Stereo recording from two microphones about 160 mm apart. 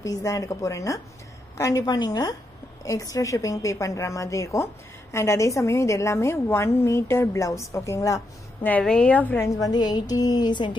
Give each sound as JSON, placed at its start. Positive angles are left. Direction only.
{"t": 0.0, "sound": "a woman's voice", "side_deg": 20}
{"t": 8.6, "sound": "a woman's voice", "side_deg": 5}